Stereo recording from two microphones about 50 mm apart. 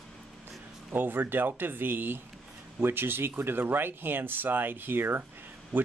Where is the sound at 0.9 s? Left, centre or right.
Right.